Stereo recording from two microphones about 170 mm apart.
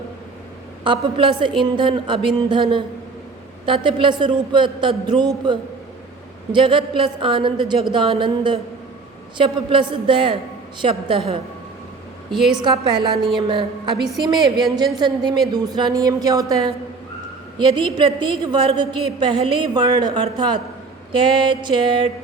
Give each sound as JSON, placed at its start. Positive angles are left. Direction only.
{"t": 0.9, "sound": "a woman's voice", "side_deg": -30}
{"t": 12.3, "sound": "a woman's voice", "side_deg": 0}
{"t": 12.6, "sound": "a woman's voice", "side_deg": -25}
{"t": 17.9, "sound": "a woman's voice", "side_deg": -30}